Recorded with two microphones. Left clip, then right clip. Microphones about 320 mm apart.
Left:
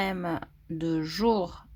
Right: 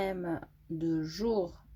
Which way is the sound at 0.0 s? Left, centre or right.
Left.